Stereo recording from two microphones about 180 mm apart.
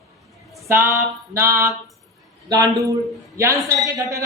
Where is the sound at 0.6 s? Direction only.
15° right (ahead or behind).